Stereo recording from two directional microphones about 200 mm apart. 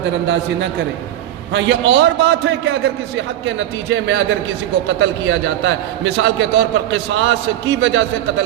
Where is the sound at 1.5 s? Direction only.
65° right (ahead or behind).